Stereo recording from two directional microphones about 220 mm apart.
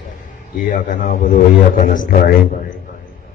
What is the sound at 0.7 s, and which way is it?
A man's voice, 35° left (ahead or behind).